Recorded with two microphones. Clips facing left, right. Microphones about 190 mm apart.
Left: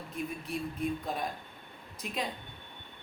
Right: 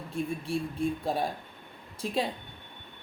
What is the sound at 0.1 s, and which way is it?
A woman's voice, 30° right (ahead or behind).